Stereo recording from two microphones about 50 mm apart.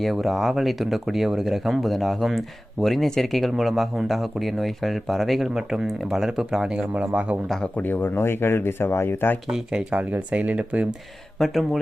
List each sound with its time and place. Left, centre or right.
0.0 s speech: centre; by 7.3 s right
7.8 s speech: left
8.2 s speech: left
9.9 s speech: right
11.3 s speech: centre